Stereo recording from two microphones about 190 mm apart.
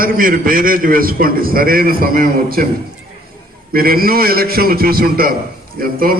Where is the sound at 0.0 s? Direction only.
50° right (ahead or behind).